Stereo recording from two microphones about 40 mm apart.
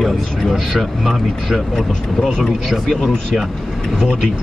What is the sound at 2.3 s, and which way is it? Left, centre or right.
Speech, centre.